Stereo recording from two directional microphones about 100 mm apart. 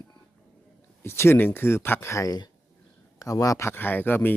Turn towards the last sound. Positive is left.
turn(degrees=20)  # may be behind; listen again after turning